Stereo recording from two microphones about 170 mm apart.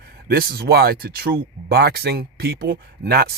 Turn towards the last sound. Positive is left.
turn(degrees=-65)  # may be behind; listen again after turning